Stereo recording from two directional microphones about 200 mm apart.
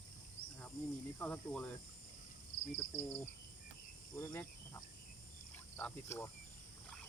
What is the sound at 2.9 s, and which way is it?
Speech, 30° left (ahead or behind).